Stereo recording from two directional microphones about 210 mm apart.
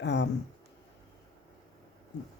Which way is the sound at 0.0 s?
55° left (ahead or behind).